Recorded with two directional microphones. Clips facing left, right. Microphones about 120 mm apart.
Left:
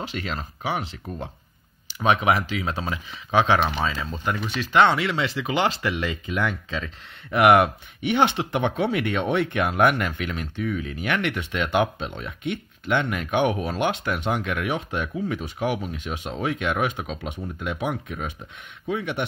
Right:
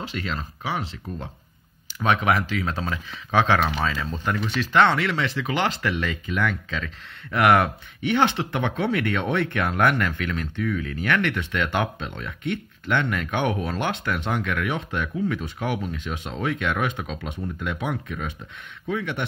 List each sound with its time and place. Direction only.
0.7 s speech: 15° left (ahead or behind)